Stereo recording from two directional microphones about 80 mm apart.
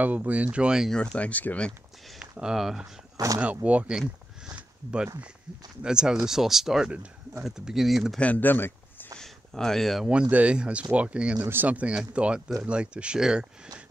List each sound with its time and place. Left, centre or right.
0.0 s speech: centre
0.8 s speech: centre
2.1 s speech: centre
3.3 s speech: centre
4.6 s a sound: centre
5.8 s speech: centre
8.2 s speech: left
9.2 s a sound: centre
10.3 s speech: centre